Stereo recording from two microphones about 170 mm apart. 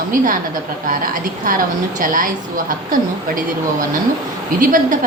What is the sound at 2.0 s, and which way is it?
Speech, 55° right (ahead or behind).